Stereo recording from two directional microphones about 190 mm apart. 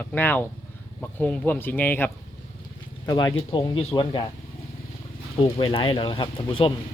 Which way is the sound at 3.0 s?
20° left (ahead or behind).